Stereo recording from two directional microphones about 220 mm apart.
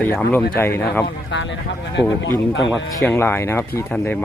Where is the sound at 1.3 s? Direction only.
55° left (ahead or behind).